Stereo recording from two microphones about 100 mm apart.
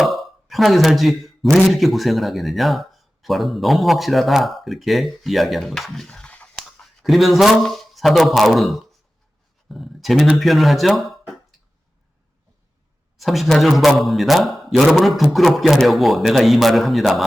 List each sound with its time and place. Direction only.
0.0 s a sound: centre (ahead or behind)
1.6 s speech: centre (ahead or behind)
13.1 s speech: centre (ahead or behind)